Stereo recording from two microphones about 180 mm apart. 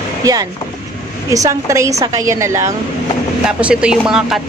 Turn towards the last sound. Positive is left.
turn(degrees=-5)  # may be behind; listen again after turning